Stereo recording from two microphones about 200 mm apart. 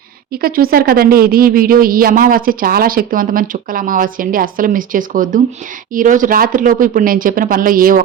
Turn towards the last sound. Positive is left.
turn(degrees=-45)  # may be behind; listen again after turning